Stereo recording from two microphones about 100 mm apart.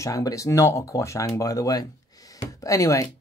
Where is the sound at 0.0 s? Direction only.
35° left (ahead or behind).